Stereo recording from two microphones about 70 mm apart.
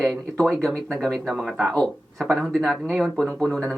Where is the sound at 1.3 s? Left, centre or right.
Centre.